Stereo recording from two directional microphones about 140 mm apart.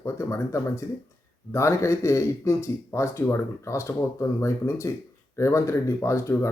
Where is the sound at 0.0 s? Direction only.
20° left (ahead or behind).